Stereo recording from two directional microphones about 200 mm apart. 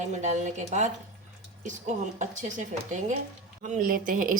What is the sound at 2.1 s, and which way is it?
A woman's voice, 35° right (ahead or behind).